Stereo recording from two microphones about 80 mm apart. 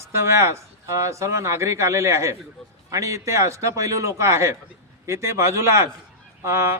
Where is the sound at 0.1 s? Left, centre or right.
Right.